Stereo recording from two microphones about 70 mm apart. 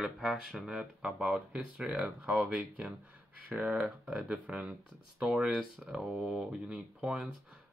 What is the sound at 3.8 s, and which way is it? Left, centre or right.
Speech, centre.